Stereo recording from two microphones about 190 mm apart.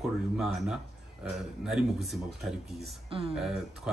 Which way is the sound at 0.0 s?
Centre (ahead or behind).